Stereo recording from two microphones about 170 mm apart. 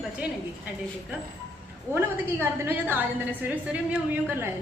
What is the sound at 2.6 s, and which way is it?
Speech, 10° right (ahead or behind).